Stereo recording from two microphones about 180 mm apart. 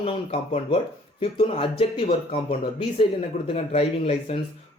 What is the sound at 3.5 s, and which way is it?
Speech, 35° left (ahead or behind).